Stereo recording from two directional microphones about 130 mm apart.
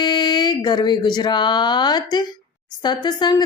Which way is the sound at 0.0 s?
35° left (ahead or behind).